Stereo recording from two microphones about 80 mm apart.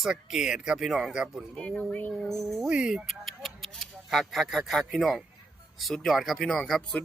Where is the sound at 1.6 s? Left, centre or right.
Centre.